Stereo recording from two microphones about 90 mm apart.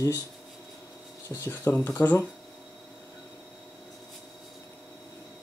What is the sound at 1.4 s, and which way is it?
Speech, 25° left (ahead or behind).